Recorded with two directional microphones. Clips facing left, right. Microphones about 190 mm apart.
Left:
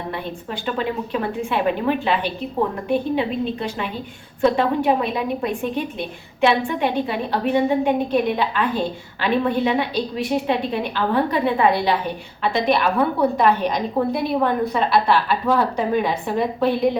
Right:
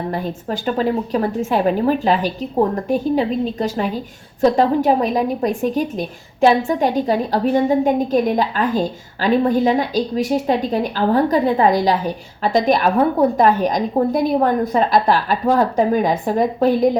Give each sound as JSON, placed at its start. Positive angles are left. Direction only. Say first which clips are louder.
{"t": 0.1, "sound": "a woman's voice", "louder": "right 5 dB", "side_deg": -40}